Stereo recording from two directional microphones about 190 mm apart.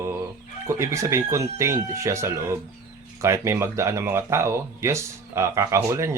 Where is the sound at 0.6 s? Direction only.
15° right (ahead or behind).